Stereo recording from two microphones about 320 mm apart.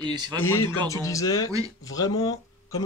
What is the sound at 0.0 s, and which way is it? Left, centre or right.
Speech, centre.